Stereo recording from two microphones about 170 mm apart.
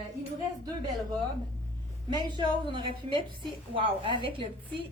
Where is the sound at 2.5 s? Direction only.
30° right (ahead or behind).